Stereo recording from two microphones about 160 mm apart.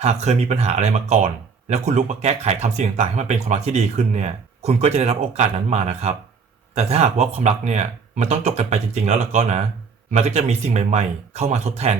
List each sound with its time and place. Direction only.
0.0 s speech: 45° right (ahead or behind)